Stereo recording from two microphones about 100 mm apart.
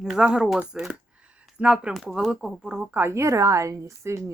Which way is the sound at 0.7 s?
5° right (ahead or behind).